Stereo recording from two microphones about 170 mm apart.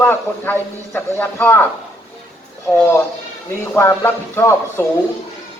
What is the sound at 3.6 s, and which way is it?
A man's voice, 15° left (ahead or behind).